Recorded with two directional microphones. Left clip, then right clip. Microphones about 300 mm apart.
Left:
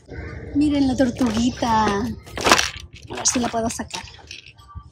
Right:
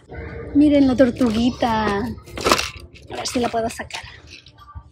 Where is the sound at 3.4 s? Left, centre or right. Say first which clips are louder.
Right 2 dB; centre.